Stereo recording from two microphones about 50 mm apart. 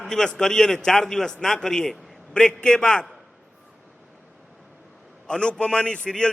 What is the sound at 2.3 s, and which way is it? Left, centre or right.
Speech, left.